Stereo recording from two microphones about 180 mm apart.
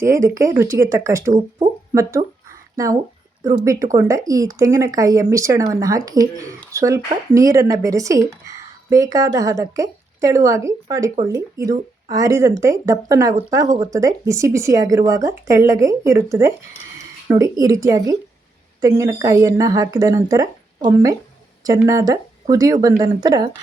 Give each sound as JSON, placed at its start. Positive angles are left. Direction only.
{"t": 0.0, "sound": "speech", "side_deg": -15}